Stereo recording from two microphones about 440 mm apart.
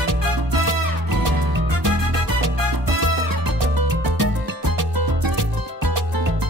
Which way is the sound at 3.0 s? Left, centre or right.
Right.